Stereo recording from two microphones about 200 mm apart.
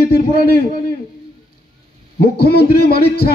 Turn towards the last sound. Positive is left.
turn(degrees=50)  # may be behind; listen again after turning